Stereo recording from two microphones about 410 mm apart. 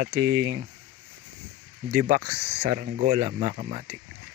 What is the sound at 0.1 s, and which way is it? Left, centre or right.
Speech, centre.